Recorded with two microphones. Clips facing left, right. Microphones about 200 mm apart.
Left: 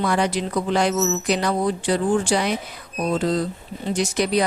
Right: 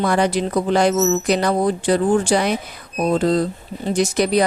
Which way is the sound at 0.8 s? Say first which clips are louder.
Right 5 dB; 50° right (ahead or behind).